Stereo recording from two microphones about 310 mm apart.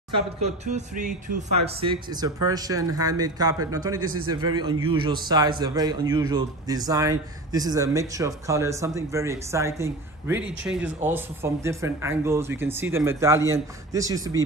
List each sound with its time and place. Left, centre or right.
0.1 s a man's voice: right